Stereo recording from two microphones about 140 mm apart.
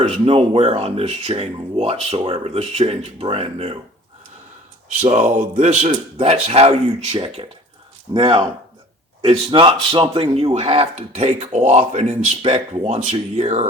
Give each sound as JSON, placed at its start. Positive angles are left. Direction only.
{"t": 0.0, "sound": "speech", "side_deg": -45}
{"t": 5.0, "sound": "speech", "side_deg": -55}